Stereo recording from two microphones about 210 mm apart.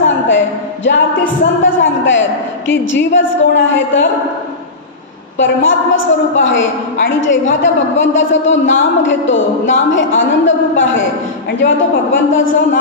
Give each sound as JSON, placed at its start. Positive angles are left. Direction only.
{"t": 1.6, "sound": "a woman's voice", "side_deg": 65}
{"t": 5.4, "sound": "a woman's voice", "side_deg": 65}